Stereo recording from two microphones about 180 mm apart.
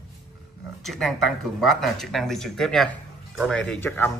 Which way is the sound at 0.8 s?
Centre (ahead or behind).